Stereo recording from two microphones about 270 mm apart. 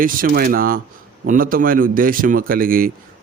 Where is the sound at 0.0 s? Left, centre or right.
Right.